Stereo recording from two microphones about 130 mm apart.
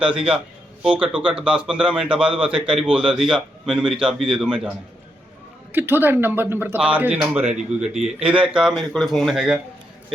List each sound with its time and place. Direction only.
0.8 s a man's voice: 10° right (ahead or behind)
5.7 s a man's voice: 15° right (ahead or behind)
8.7 s speech: 5° left (ahead or behind)